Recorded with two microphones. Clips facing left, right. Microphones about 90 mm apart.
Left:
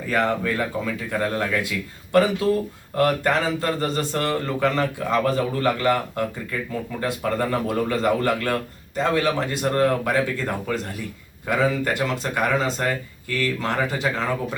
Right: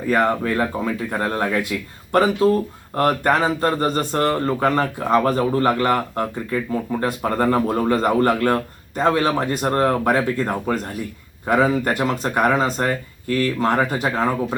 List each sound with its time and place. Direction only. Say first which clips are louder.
0.1 s a man's voice: right 3 dB; 40° right (ahead or behind)